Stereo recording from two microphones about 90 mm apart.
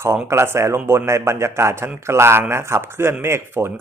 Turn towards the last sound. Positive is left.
turn(degrees=-30)  # may be behind; listen again after turning